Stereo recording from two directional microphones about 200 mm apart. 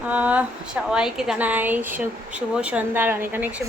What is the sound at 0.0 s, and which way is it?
A woman's voice, 5° right (ahead or behind).